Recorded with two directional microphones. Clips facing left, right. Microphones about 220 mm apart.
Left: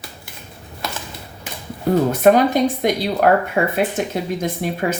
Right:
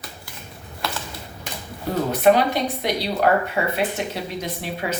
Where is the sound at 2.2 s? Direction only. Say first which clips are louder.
Left 3 dB; 45° left (ahead or behind).